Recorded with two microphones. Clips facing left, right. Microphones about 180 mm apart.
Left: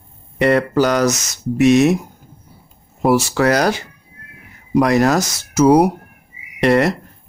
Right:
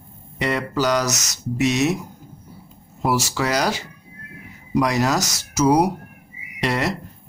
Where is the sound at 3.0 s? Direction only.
55° left (ahead or behind).